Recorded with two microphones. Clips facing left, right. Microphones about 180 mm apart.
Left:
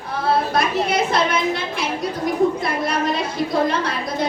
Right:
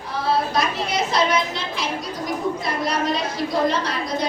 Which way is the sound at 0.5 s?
55° left (ahead or behind).